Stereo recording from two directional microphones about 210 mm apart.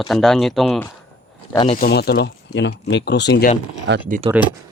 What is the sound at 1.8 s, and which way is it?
Speech, 50° left (ahead or behind).